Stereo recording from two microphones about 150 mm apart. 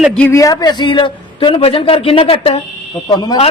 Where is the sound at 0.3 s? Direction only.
20° left (ahead or behind); by 2.6 s 40° left (ahead or behind).